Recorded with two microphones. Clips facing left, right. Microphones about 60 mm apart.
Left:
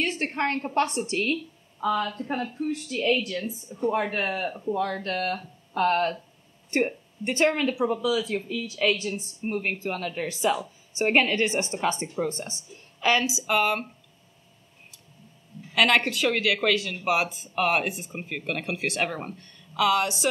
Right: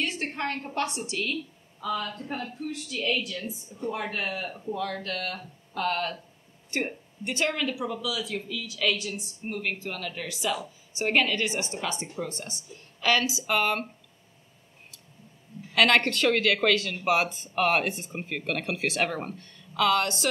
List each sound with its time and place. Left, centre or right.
0.0 s a sound: left
0.4 s a woman's voice: left; by 3.9 s centre
4.1 s speech: left
13.0 s speech: centre
15.7 s speech: centre